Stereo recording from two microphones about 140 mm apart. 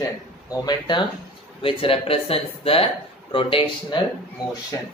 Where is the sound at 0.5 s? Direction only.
30° left (ahead or behind).